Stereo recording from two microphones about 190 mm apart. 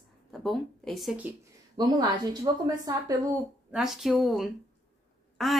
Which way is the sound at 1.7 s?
20° right (ahead or behind).